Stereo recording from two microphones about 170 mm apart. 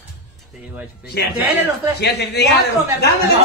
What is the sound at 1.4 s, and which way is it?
Speech, 10° right (ahead or behind).